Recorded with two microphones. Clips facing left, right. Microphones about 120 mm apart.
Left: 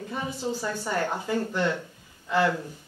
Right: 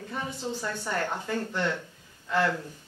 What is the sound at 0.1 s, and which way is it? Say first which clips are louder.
Speech: left 3 dB; 5° left (ahead or behind).